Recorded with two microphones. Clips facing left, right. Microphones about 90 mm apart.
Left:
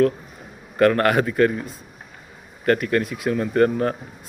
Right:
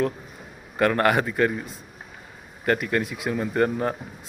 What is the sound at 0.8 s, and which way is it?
Speech, 15° right (ahead or behind).